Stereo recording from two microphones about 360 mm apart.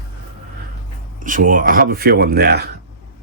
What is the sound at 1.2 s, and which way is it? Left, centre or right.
Speech, right.